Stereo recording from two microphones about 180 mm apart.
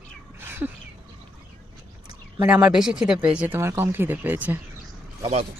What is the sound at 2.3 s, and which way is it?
Speech, 5° right (ahead or behind).